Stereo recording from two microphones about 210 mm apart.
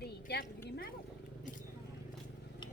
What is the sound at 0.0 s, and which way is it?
Speech, 50° left (ahead or behind).